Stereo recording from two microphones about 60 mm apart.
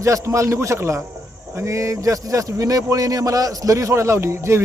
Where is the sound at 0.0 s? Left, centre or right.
Right.